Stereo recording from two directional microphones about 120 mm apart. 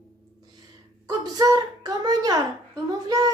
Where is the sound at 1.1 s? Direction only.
30° right (ahead or behind).